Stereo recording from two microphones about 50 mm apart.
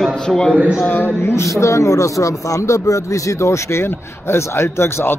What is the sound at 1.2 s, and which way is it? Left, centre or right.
Speech, left.